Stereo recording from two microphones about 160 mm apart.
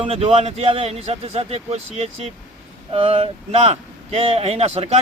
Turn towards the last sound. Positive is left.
turn(degrees=-40)  # may be behind; listen again after turning